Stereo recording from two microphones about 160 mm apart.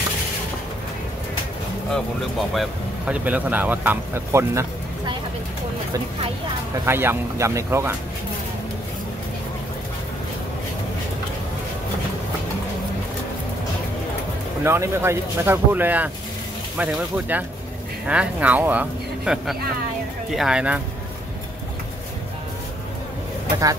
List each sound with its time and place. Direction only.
2.5 s speech: 5° right (ahead or behind)
6.9 s speech: 15° right (ahead or behind)
14.6 s speech: 15° right (ahead or behind)